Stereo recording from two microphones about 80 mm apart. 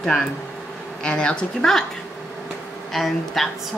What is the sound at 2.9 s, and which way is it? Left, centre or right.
Speech, centre.